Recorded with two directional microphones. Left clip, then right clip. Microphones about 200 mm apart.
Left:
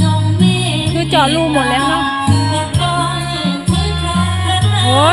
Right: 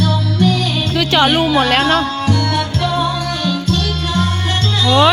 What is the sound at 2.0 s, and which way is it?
Music, 55° left (ahead or behind).